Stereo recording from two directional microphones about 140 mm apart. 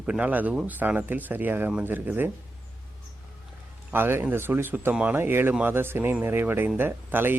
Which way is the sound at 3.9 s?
15° right (ahead or behind).